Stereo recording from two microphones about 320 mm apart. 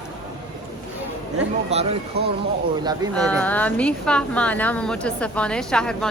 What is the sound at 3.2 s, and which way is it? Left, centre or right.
A woman's voice, centre.